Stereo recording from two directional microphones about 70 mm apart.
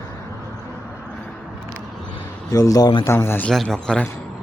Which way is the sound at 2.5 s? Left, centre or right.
Left.